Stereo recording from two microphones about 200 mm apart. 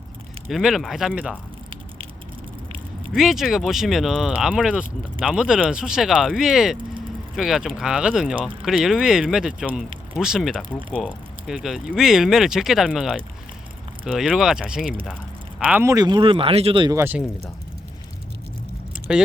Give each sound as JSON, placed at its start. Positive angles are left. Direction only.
{"t": 0.4, "sound": "speech", "side_deg": 0}
{"t": 3.1, "sound": "speech", "side_deg": 0}
{"t": 15.0, "sound": "a sound", "side_deg": 5}
{"t": 15.6, "sound": "speech", "side_deg": -10}
{"t": 17.0, "sound": "speech", "side_deg": -10}
{"t": 18.9, "sound": "vehicle", "side_deg": -5}